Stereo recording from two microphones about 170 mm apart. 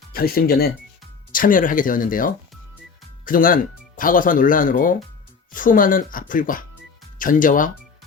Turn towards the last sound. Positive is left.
turn(degrees=50)  # may be behind; listen again after turning